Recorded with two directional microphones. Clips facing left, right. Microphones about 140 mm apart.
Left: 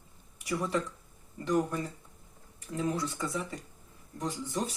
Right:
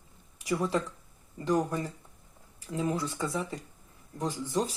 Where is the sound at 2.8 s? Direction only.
20° right (ahead or behind).